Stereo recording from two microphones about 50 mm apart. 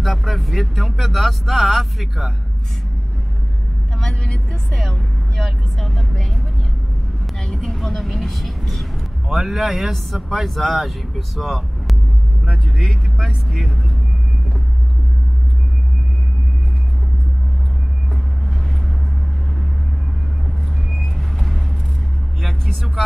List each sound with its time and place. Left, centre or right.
0.0 s speech: centre
4.0 s speech: centre
13.0 s speech: centre
20.9 s vehicle: centre
22.4 s speech: centre